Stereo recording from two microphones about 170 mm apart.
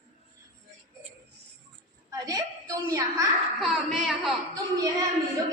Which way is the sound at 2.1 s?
20° right (ahead or behind).